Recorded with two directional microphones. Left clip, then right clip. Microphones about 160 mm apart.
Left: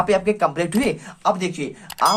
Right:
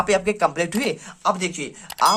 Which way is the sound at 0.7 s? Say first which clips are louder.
Left 2 dB; 5° right (ahead or behind).